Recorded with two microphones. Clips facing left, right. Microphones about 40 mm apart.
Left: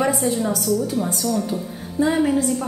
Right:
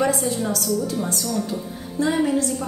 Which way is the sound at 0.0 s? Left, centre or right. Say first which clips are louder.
Left 1 dB; centre.